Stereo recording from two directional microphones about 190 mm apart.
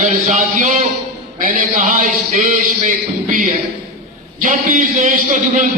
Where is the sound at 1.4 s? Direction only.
45° right (ahead or behind).